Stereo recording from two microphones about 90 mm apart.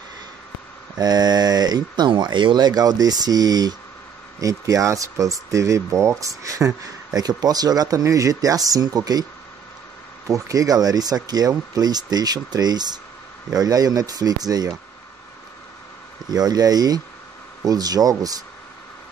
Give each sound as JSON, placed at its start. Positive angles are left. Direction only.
{"t": 0.9, "sound": "speech", "side_deg": -50}
{"t": 10.2, "sound": "speech", "side_deg": -35}
{"t": 16.3, "sound": "speech", "side_deg": -45}